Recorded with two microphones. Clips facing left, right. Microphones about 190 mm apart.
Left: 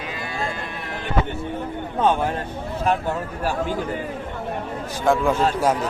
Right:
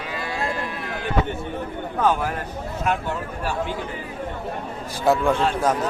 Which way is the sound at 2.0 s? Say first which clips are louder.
Left 2 dB; 25° left (ahead or behind).